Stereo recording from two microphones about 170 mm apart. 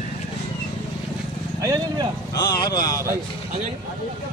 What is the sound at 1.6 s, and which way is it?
Speech, 20° right (ahead or behind).